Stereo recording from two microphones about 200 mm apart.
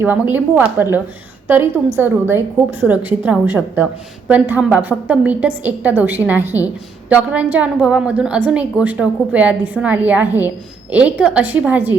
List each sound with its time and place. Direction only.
0.0 s a woman's voice: 10° right (ahead or behind)